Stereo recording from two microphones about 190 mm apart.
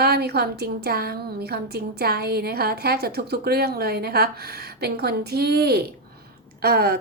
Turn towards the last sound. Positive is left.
turn(degrees=-55)  # may be behind; listen again after turning